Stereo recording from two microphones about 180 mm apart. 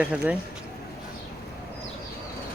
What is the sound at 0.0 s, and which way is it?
Speech, 5° right (ahead or behind).